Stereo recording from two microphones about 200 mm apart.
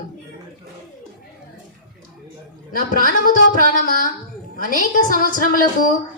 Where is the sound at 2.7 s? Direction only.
45° left (ahead or behind).